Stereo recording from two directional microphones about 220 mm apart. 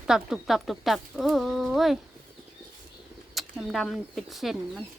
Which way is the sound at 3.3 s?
Centre (ahead or behind).